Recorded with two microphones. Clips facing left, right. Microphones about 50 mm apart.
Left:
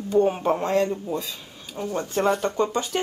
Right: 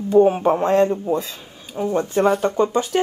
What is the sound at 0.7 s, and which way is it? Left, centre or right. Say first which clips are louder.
Speech: right 7 dB; right.